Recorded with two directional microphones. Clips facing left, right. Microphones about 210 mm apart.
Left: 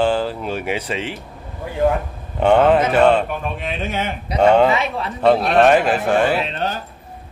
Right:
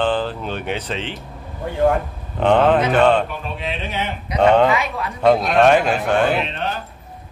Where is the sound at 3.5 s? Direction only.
50° left (ahead or behind).